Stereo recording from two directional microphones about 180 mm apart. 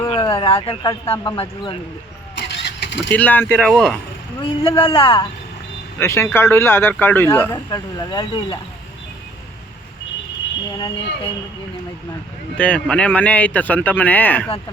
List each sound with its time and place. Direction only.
0.0 s speech: 25° left (ahead or behind)
2.4 s vehicle: 70° left (ahead or behind)
3.1 s speech: 10° left (ahead or behind)
3.5 s speech: centre (ahead or behind)
4.4 s speech: 30° left (ahead or behind)
6.0 s speech: 15° left (ahead or behind)
7.5 s speech: 20° left (ahead or behind)
12.5 s speech: 5° left (ahead or behind)